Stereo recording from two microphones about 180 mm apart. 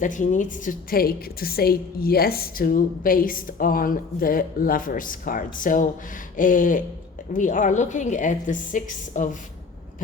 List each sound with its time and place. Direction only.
0.0 s a woman's voice: 45° left (ahead or behind)